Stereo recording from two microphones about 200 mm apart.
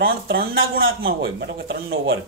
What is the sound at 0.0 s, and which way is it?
Speech, 50° right (ahead or behind).